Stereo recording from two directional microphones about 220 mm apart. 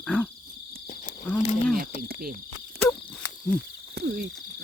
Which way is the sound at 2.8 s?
10° left (ahead or behind).